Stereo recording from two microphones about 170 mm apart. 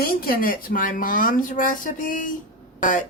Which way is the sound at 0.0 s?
60° left (ahead or behind).